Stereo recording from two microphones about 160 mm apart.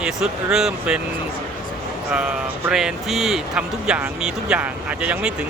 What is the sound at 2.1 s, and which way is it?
Speech, 5° right (ahead or behind).